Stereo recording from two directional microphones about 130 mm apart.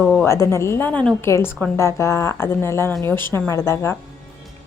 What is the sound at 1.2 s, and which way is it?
Speech, 20° left (ahead or behind).